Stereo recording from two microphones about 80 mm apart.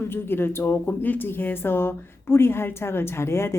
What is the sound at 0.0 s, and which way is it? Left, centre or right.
Speech, left.